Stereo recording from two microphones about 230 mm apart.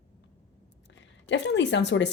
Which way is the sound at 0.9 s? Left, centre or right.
Left.